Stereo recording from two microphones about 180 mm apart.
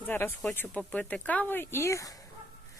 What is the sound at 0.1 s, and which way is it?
Speech, 10° left (ahead or behind).